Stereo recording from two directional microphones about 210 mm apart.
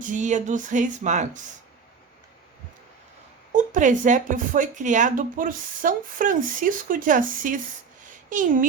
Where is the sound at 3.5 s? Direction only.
35° right (ahead or behind).